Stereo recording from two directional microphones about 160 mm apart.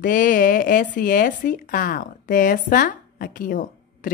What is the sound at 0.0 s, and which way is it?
A woman's voice, 55° left (ahead or behind).